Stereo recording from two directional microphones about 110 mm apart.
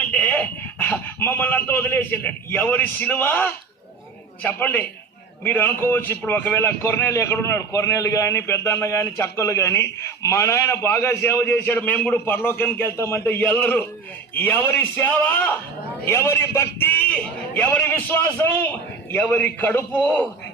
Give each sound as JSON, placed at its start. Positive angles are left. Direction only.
{"t": 0.1, "sound": "a man's voice", "side_deg": 15}